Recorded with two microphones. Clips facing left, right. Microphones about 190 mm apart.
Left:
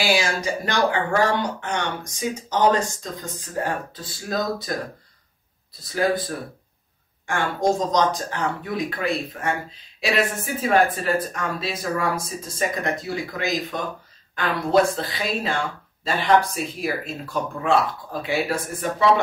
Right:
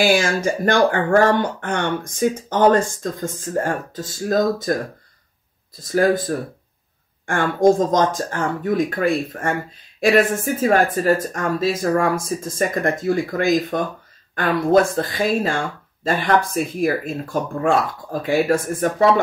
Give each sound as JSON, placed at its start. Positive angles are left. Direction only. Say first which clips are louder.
{"t": 0.0, "sound": "speech", "louder": "right 5 dB", "side_deg": -50}
{"t": 5.8, "sound": "speech", "louder": "right 5 dB", "side_deg": -50}